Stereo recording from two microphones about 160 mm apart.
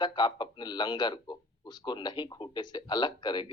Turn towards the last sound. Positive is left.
turn(degrees=25)  # may be behind; listen again after turning